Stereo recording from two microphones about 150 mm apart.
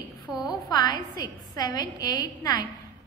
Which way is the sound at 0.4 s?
25° left (ahead or behind).